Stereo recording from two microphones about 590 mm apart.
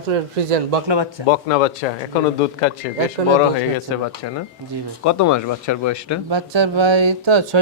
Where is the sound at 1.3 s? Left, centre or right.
Left.